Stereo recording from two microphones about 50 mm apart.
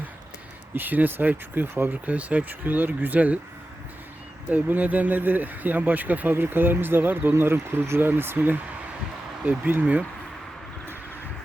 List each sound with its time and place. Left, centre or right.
0.7 s speech: right
4.4 s speech: right
9.8 s speech: right